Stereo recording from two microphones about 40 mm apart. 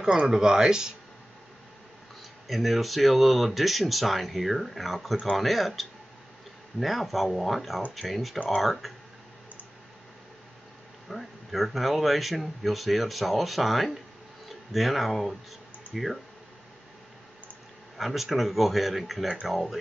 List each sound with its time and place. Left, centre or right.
0.3 s speech: centre
2.4 s speech: centre
11.1 s speech: centre
17.9 s speech: centre